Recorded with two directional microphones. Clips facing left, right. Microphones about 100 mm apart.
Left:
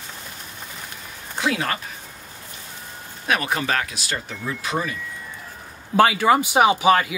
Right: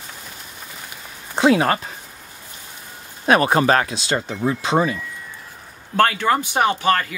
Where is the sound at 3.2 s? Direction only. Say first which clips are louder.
Right 8 dB; 35° right (ahead or behind).